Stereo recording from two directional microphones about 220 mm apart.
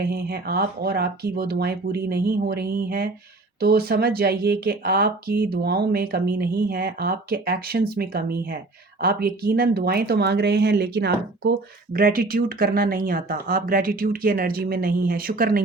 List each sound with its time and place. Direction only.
0.0 s speech: 45° right (ahead or behind)